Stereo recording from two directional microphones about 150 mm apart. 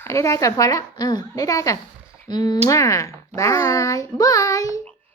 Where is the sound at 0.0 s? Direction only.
20° left (ahead or behind).